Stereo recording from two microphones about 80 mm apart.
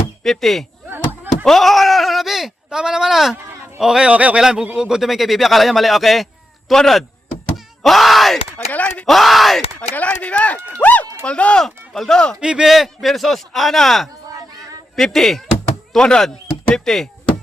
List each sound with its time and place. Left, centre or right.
0.2 s speech: centre
0.9 s a sound: right
1.5 s a man's voice: centre
8.5 s speech: centre
9.0 s a man's voice: centre
9.9 s speech: centre
10.7 s a sound: centre
11.6 s a man's voice: centre
12.4 s a man's voice: centre